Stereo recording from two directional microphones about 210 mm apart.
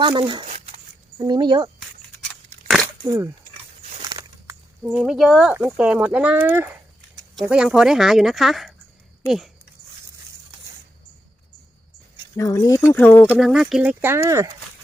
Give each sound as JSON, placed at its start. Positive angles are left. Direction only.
{"t": 0.0, "sound": "speech", "side_deg": -20}
{"t": 0.4, "sound": "a sound", "side_deg": -35}
{"t": 1.2, "sound": "speech", "side_deg": -20}
{"t": 3.0, "sound": "speech", "side_deg": -15}
{"t": 3.8, "sound": "a sound", "side_deg": -25}
{"t": 5.6, "sound": "speech", "side_deg": -5}
{"t": 12.4, "sound": "speech", "side_deg": 15}